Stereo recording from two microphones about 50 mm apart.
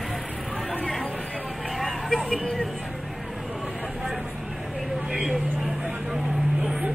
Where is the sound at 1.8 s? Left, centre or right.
Centre.